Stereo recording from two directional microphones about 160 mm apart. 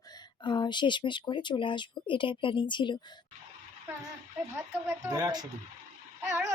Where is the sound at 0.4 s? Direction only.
30° left (ahead or behind).